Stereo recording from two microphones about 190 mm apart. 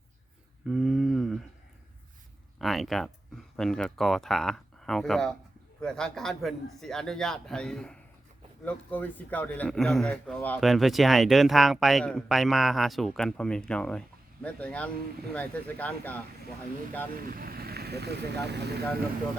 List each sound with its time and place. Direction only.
0.7 s a sound: centre (ahead or behind)
2.6 s a man's voice: centre (ahead or behind)
17.2 s speech: 50° right (ahead or behind)